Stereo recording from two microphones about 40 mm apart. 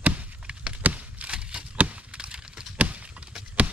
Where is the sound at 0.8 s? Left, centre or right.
Right.